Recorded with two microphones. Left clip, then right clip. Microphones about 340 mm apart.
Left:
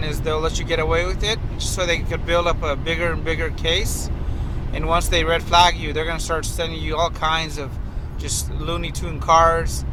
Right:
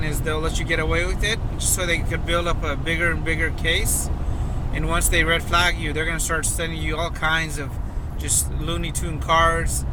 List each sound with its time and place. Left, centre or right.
0.0 s speech: centre